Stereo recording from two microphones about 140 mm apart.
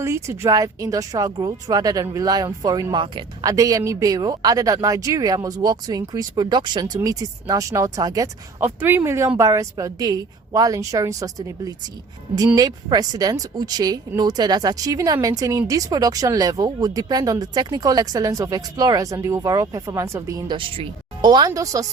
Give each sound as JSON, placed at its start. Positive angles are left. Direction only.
{"t": 0.0, "sound": "speech", "side_deg": -20}
{"t": 3.4, "sound": "speech", "side_deg": -25}
{"t": 20.6, "sound": "speech", "side_deg": -35}